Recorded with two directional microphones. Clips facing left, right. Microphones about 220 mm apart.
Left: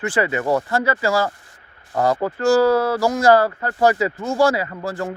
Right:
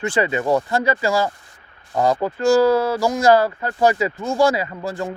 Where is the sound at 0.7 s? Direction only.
15° right (ahead or behind).